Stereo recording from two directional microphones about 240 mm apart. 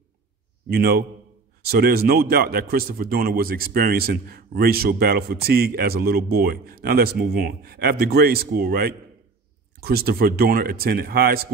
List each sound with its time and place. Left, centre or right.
0.7 s speech: right